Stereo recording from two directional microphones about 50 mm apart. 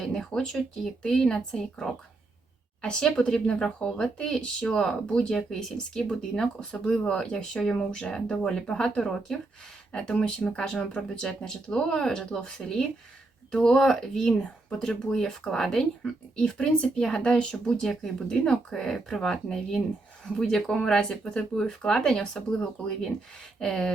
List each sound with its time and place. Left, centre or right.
0.0 s a sound: centre
1.0 s speech: centre
16.9 s speech: centre